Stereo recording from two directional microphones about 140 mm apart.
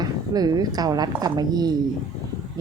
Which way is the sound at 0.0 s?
30° right (ahead or behind).